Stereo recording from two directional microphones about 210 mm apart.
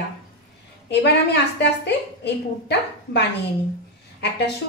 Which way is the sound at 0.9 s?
55° left (ahead or behind).